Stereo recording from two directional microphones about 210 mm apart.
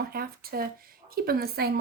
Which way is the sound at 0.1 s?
45° right (ahead or behind).